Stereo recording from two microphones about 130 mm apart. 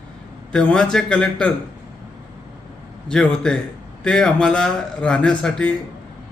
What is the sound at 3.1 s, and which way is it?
A man's voice, 5° left (ahead or behind).